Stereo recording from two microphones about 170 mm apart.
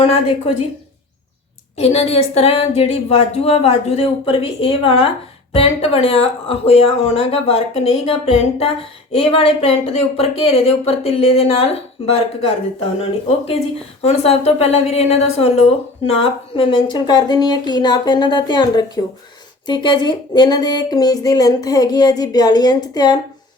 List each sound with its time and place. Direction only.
0.0 s speech: 35° left (ahead or behind)
1.8 s a woman's voice: 35° left (ahead or behind)